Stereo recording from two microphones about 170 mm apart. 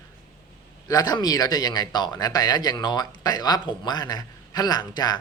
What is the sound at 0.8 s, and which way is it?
Speech, 20° left (ahead or behind).